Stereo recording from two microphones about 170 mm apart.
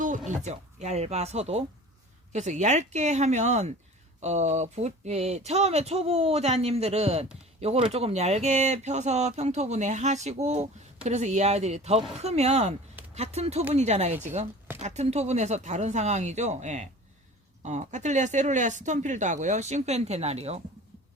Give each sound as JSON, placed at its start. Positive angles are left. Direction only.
{"t": 0.3, "sound": "speech", "side_deg": -40}